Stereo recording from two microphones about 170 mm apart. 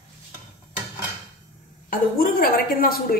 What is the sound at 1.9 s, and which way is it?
A woman's voice, 55° left (ahead or behind).